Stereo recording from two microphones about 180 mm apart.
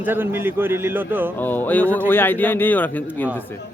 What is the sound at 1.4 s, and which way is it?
Speech, 10° left (ahead or behind).